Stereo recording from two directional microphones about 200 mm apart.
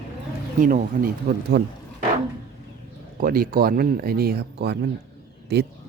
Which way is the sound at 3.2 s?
45° right (ahead or behind).